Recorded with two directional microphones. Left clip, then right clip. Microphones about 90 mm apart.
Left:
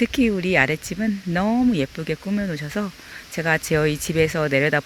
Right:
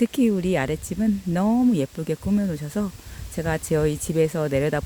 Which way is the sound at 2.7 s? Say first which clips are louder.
Left 2 dB; 25° right (ahead or behind).